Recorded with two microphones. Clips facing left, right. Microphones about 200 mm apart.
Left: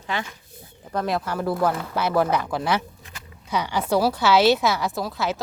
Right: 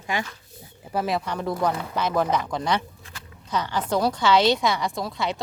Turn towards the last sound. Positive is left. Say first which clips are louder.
# left 2 dB
turn(degrees=5)  # may be behind; listen again after turning